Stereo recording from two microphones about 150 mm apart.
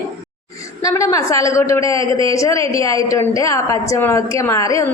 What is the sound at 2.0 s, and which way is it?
Speech, 35° right (ahead or behind).